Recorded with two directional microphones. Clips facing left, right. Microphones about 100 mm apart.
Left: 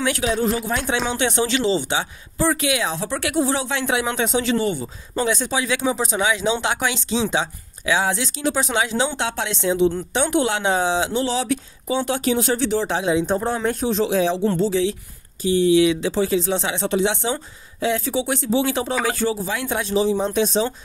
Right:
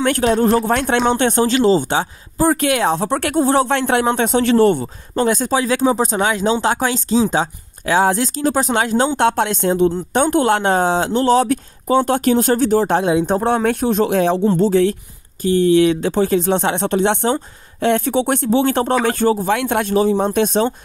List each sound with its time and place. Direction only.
0.0 s speech: 50° right (ahead or behind); by 5.3 s 65° right (ahead or behind)
5.3 s speech: 40° right (ahead or behind)